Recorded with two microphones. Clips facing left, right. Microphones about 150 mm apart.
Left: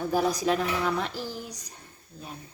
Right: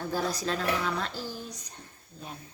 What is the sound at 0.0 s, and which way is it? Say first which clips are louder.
Speech: left 5 dB; 15° left (ahead or behind).